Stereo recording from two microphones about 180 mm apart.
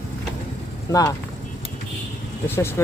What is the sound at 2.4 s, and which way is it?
Speech, 10° left (ahead or behind).